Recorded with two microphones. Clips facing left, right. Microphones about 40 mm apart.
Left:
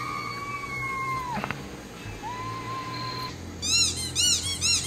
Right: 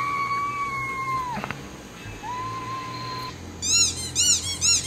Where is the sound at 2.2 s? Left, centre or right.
Centre.